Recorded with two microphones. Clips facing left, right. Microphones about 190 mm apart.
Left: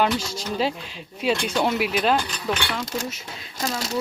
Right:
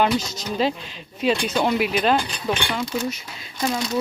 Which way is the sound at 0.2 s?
10° left (ahead or behind).